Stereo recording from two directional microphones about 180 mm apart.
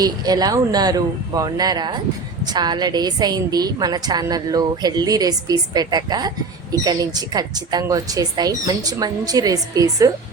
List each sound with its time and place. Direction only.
0.0 s a woman's voice: 20° right (ahead or behind)